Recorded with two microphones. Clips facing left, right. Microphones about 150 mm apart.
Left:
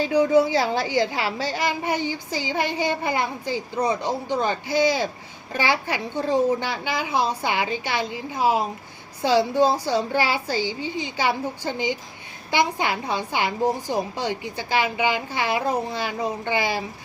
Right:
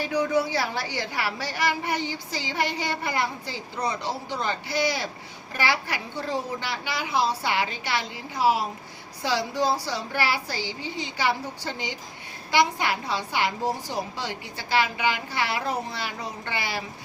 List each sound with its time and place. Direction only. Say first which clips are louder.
0.0 s a child's voice: left 6 dB; 25° left (ahead or behind)